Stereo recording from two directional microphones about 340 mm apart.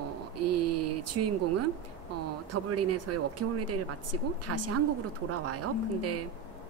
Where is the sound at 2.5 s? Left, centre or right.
Right.